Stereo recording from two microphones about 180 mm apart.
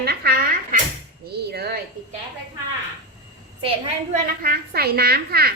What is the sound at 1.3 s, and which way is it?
Speech, 65° right (ahead or behind).